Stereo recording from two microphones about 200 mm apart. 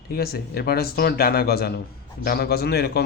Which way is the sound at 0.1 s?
50° left (ahead or behind).